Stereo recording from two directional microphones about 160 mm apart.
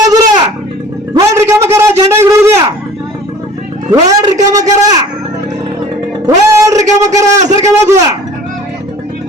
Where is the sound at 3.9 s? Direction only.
20° right (ahead or behind).